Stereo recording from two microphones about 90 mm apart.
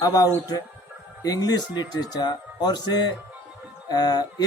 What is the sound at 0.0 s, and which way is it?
Speech, 45° left (ahead or behind).